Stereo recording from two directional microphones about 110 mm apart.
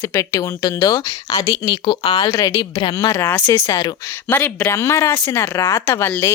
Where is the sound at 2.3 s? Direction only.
35° left (ahead or behind).